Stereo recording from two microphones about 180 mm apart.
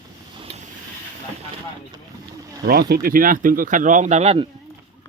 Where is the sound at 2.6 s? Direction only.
60° right (ahead or behind); by 4.4 s 35° right (ahead or behind).